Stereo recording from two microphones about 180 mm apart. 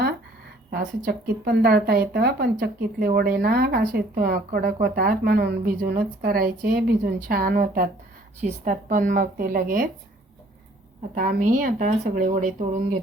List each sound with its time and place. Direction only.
0.7 s speech: 55° right (ahead or behind)
11.1 s speech: 50° right (ahead or behind)